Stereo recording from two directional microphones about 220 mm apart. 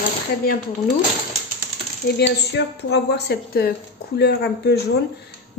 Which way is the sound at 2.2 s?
50° left (ahead or behind).